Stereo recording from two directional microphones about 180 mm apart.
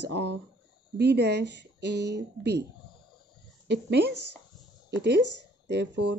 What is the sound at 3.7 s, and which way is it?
Speech, 70° right (ahead or behind).